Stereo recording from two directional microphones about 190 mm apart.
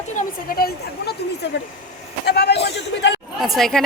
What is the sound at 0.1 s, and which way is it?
Speech, 45° left (ahead or behind).